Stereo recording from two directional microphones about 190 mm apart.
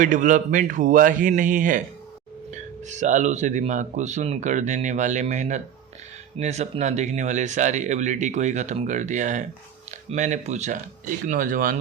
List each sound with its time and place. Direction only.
0.0 s speech: 40° right (ahead or behind)
2.9 s speech: 40° right (ahead or behind)